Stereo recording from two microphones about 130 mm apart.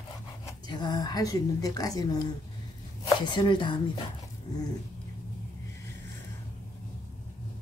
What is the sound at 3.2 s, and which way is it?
Speech, 35° left (ahead or behind).